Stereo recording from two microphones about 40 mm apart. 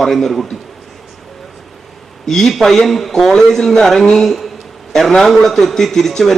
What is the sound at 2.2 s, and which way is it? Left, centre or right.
A man's voice, centre.